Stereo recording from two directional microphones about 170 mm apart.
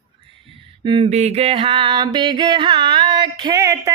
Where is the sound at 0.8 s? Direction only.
30° right (ahead or behind).